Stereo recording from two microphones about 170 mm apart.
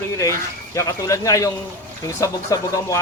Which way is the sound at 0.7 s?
20° left (ahead or behind).